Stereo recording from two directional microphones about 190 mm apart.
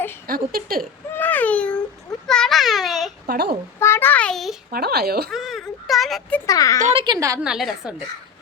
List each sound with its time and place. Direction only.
0.3 s speech: 50° right (ahead or behind)
1.1 s a sound: 10° left (ahead or behind)
3.2 s speech: 55° right (ahead or behind)
3.8 s child singing: 15° left (ahead or behind)
4.7 s speech: 55° right (ahead or behind)
5.3 s speech: centre (ahead or behind)
6.4 s a child's voice: 15° left (ahead or behind)
6.7 s a woman's voice: 40° right (ahead or behind)
7.0 s a woman's voice: 20° right (ahead or behind)
7.4 s a woman's voice: 5° right (ahead or behind)